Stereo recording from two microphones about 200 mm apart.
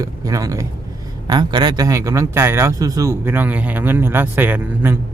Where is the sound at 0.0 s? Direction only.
15° right (ahead or behind).